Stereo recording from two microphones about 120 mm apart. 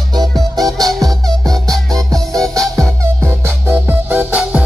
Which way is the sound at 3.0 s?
25° right (ahead or behind).